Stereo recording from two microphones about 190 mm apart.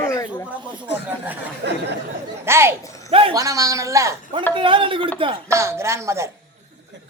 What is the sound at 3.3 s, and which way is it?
Speech, 15° right (ahead or behind).